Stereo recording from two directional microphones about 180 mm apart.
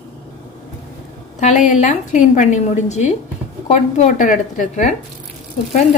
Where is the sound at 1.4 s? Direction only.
40° left (ahead or behind).